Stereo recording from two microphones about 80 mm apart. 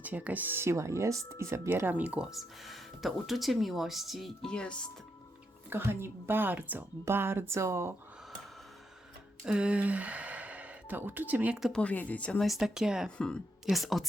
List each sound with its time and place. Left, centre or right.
0.0 s speech: centre
2.2 s speech: centre
4.4 s speech: centre
5.7 s speech: right
9.5 s speech: centre
11.7 s speech: centre
12.4 s speech: centre
13.1 s speech: centre
13.7 s speech: centre